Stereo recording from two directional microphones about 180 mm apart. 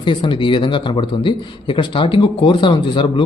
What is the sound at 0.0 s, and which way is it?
A man's voice, 25° left (ahead or behind).